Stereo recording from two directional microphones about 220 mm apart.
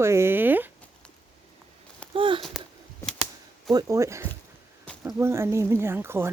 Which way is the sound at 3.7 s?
15° right (ahead or behind).